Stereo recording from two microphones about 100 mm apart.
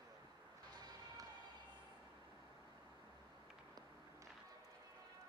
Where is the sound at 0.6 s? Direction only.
45° right (ahead or behind).